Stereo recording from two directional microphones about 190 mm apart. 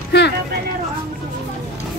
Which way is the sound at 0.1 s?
60° left (ahead or behind).